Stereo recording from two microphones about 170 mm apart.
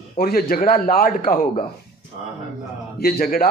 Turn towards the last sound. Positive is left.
turn(degrees=60)  # may be behind; listen again after turning